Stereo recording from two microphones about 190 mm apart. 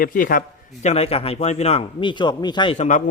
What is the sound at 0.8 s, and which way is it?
Speech, 35° left (ahead or behind).